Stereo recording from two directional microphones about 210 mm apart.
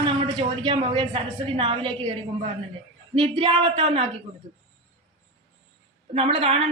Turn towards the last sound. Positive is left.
turn(degrees=-25)  # may be behind; listen again after turning